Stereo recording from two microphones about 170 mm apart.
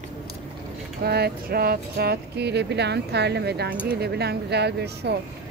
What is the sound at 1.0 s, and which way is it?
Speech, 70° right (ahead or behind).